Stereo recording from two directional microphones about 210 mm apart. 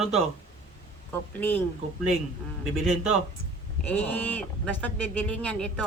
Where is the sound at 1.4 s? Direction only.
10° left (ahead or behind).